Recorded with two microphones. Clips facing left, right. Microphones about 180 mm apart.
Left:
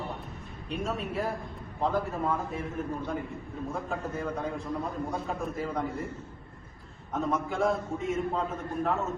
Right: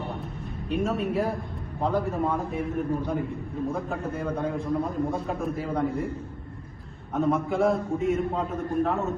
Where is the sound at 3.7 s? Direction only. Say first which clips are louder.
Right 2 dB; centre (ahead or behind).